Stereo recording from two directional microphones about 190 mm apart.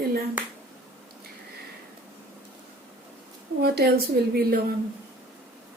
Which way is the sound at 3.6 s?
55° right (ahead or behind).